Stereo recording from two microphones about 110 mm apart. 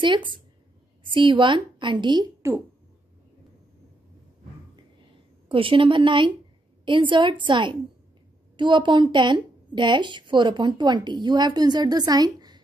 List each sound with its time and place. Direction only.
0.0 s a woman's voice: 45° right (ahead or behind)
2.4 s speech: 25° right (ahead or behind)
5.5 s a woman's voice: 50° right (ahead or behind)